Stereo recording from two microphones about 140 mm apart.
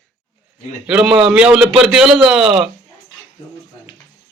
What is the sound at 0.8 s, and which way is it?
A man's voice, 5° right (ahead or behind).